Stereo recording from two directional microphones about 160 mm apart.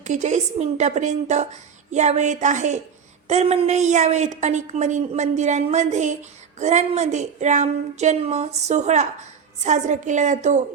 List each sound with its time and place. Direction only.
0.0 s a woman's voice: 45° right (ahead or behind)